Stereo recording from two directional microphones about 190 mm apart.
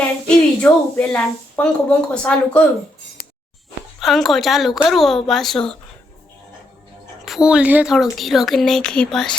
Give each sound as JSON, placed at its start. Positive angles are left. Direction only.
{"t": 0.6, "sound": "speech", "side_deg": 5}
{"t": 4.0, "sound": "speech", "side_deg": 0}
{"t": 7.3, "sound": "speech", "side_deg": -5}